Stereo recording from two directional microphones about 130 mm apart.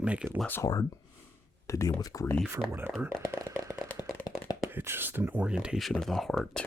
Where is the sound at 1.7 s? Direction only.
25° left (ahead or behind).